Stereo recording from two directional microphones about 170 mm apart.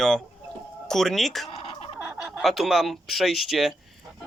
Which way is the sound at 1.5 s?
30° left (ahead or behind).